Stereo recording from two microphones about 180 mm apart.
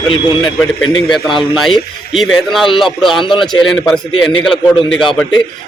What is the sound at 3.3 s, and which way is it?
Speech, 25° left (ahead or behind).